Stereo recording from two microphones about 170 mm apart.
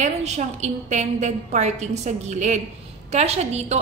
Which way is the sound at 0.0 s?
45° right (ahead or behind).